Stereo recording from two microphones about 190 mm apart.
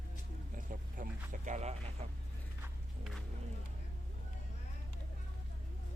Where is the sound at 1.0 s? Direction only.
40° right (ahead or behind).